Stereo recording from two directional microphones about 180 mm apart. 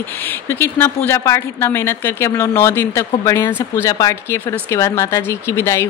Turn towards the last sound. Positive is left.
turn(degrees=15)  # may be behind; listen again after turning